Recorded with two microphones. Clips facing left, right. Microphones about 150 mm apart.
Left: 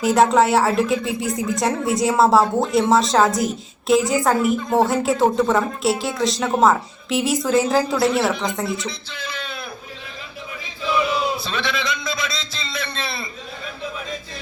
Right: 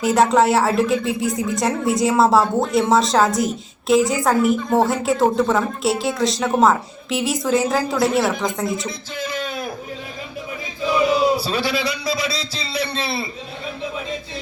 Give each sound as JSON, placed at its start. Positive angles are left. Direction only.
{"t": 0.0, "sound": "a woman's voice", "side_deg": 0}
{"t": 8.9, "sound": "a sound", "side_deg": -45}
{"t": 11.3, "sound": "a man's voice", "side_deg": -35}